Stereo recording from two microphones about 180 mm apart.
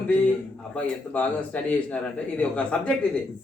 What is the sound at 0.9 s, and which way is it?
A man's voice, 10° left (ahead or behind).